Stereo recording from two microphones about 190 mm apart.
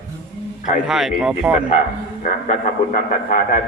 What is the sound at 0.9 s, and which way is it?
Speech, centre (ahead or behind).